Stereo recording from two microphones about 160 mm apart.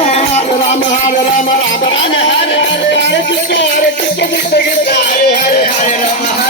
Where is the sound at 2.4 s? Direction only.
90° left.